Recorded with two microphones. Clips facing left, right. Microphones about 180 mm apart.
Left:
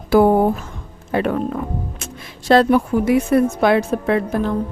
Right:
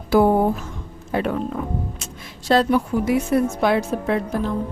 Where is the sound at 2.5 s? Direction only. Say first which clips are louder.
Left 4 dB; 60° left (ahead or behind).